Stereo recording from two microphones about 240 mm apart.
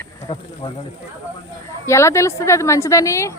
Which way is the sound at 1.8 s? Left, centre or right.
Centre.